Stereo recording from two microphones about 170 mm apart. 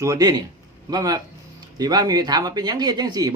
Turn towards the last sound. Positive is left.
turn(degrees=-25)  # may be behind; listen again after turning